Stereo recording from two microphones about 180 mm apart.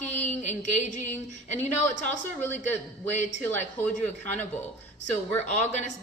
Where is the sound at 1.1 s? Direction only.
10° left (ahead or behind).